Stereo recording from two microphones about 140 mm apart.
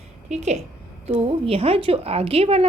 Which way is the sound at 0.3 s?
50° right (ahead or behind).